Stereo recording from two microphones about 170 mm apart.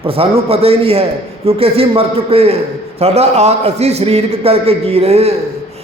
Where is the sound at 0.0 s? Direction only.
35° right (ahead or behind).